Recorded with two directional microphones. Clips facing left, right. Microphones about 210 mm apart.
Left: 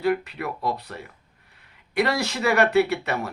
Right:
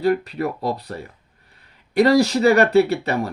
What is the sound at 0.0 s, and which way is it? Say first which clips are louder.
Speech: right 4 dB; 35° right (ahead or behind).